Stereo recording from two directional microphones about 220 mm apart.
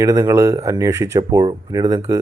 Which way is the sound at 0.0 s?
15° right (ahead or behind).